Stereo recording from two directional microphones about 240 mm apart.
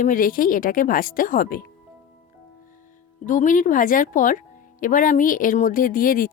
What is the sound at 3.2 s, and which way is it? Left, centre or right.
Speech, left.